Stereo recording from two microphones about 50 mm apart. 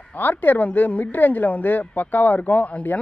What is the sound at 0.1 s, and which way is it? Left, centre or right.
Speech, left.